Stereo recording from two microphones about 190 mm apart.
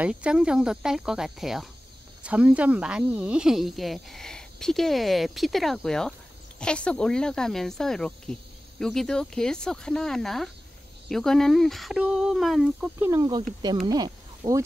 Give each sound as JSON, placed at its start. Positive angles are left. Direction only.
{"t": 0.0, "sound": "speech", "side_deg": -5}